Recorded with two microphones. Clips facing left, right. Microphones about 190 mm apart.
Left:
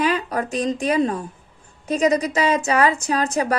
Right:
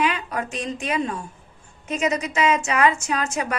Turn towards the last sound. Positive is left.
turn(degrees=35)  # may be behind; listen again after turning